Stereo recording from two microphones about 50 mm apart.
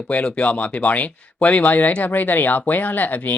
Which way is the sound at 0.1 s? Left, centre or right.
Left.